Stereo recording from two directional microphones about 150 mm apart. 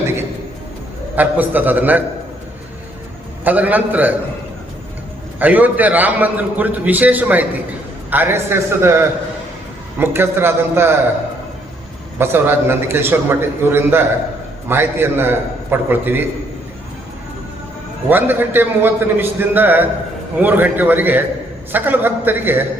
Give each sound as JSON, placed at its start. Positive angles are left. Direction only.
{"t": 1.1, "sound": "a man's voice", "side_deg": -10}
{"t": 3.4, "sound": "a man's voice", "side_deg": -10}
{"t": 5.4, "sound": "a man's voice", "side_deg": -10}
{"t": 12.2, "sound": "a man's voice", "side_deg": -15}
{"t": 18.1, "sound": "a man's voice", "side_deg": -15}